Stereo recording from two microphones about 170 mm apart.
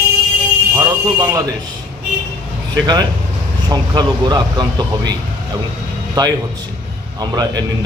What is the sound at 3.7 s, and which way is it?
A man's voice, 25° right (ahead or behind).